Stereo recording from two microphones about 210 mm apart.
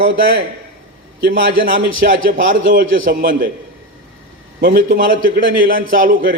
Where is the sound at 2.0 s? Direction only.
40° right (ahead or behind).